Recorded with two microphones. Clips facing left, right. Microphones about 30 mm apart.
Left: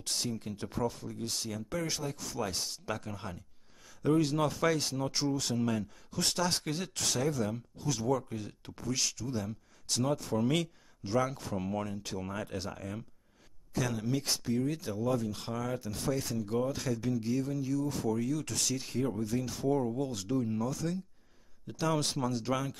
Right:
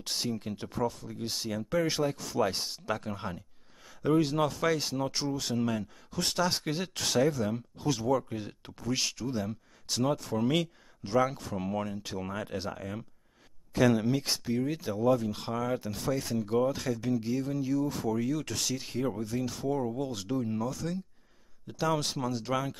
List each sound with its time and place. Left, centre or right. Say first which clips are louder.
0.0 s speech: right 2 dB; centre
0.7 s speech: right 2 dB; centre
1.0 s speech: right 2 dB; centre
13.7 s speech: right 9 dB; right
14.1 s speech: right 2 dB; centre